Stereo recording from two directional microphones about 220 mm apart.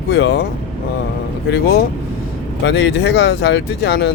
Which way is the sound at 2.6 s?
50° left (ahead or behind).